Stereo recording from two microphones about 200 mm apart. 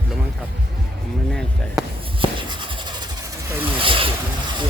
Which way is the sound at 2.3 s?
25° right (ahead or behind).